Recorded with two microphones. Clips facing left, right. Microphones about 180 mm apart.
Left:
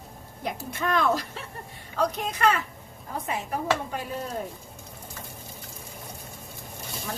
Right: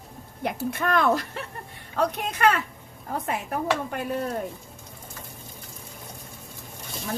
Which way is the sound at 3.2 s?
60° right (ahead or behind).